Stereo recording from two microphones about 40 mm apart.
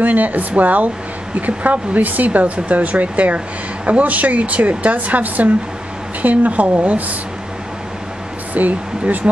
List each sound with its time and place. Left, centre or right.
0.0 s speech: right
8.5 s speech: right